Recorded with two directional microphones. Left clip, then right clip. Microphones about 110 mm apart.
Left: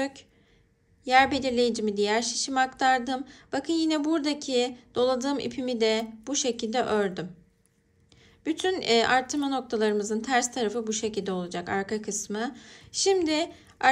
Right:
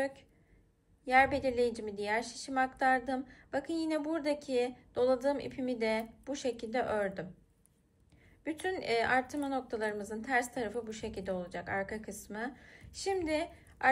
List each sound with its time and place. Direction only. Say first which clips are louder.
1.0 s a woman's voice: left 6 dB; 15° left (ahead or behind)
8.5 s a woman's voice: left 9 dB; 15° left (ahead or behind)